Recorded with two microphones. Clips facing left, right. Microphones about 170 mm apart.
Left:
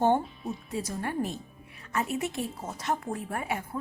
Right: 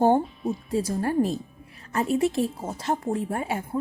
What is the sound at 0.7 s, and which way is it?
A woman's voice, 30° right (ahead or behind).